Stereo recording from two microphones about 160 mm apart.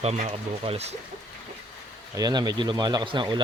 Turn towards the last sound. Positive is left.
turn(degrees=-30)  # may be behind; listen again after turning